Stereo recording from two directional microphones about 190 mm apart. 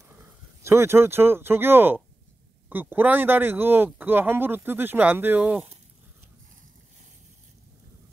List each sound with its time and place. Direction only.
0.6 s speech: 15° right (ahead or behind)